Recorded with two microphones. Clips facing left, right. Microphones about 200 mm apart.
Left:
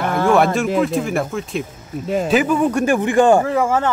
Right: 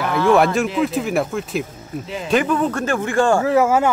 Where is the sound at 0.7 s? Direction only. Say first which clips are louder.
Left 1 dB; centre (ahead or behind); by 3.4 s 20° left (ahead or behind).